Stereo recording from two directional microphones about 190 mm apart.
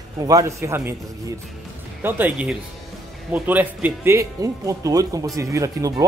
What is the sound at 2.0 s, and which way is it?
Speech, 10° right (ahead or behind).